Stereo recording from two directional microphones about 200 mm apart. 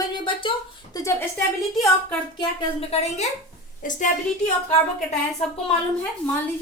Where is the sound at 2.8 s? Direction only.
30° left (ahead or behind).